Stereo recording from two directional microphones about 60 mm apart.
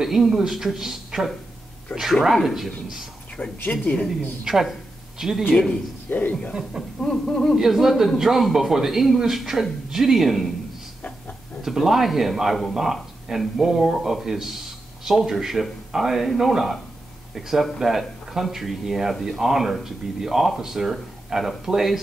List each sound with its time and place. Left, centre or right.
0.0 s speech: centre
1.9 s speech: centre
2.2 s speech: centre
3.4 s speech: left
4.5 s speech: centre
5.5 s speech: centre
6.0 s a man's voice: left
7.0 s speech: centre
7.5 s speech: centre
11.0 s oink: left
11.6 s speech: centre